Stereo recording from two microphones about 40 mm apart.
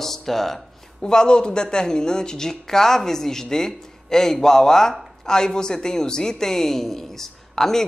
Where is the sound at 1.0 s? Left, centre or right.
Centre.